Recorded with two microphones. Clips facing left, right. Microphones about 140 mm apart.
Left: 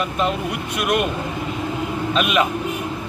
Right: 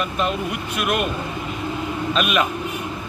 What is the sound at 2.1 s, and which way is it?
Speech, 20° left (ahead or behind).